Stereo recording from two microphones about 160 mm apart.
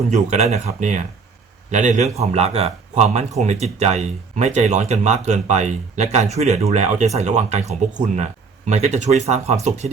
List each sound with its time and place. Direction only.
0.1 s a man's voice: 45° right (ahead or behind)